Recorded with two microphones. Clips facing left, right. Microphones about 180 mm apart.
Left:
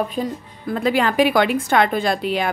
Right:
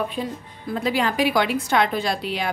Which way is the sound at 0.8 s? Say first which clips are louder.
Left 5 dB; 55° left (ahead or behind).